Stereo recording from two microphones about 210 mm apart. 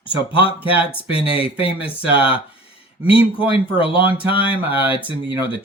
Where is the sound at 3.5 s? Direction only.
25° left (ahead or behind).